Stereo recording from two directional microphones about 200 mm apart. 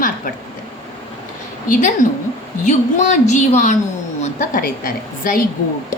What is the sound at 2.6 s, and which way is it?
A woman's voice, 35° left (ahead or behind).